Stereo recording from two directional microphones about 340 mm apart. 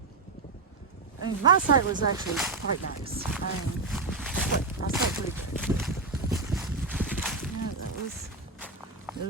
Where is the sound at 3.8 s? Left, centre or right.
Centre.